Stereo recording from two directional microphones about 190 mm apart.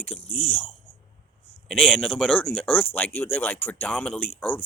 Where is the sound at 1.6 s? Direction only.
5° left (ahead or behind).